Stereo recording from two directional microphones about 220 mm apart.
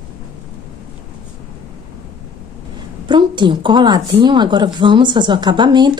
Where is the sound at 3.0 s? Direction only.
20° right (ahead or behind).